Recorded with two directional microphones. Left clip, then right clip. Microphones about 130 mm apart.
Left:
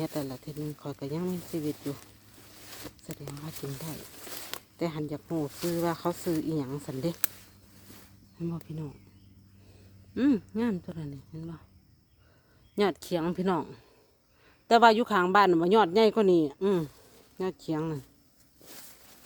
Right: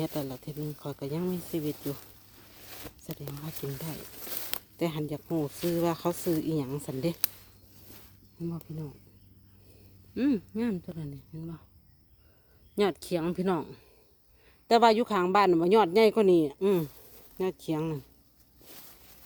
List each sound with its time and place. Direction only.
0.0 s speech: 15° right (ahead or behind); by 2.0 s 30° right (ahead or behind)
2.6 s a sound: 5° right (ahead or behind)
3.4 s speech: 20° right (ahead or behind)
4.2 s speech: 40° right (ahead or behind)
5.5 s speech: centre (ahead or behind)
5.8 s speech: 25° right (ahead or behind)
8.4 s speech: 10° left (ahead or behind)
10.2 s speech: 5° left (ahead or behind)
12.7 s speech: 5° right (ahead or behind)